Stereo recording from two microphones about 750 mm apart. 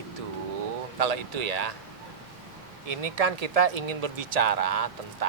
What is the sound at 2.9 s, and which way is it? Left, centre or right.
Speech, right.